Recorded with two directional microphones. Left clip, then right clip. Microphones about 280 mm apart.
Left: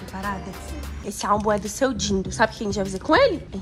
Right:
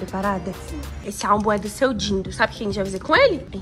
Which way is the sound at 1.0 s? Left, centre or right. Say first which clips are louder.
Right 2 dB; centre.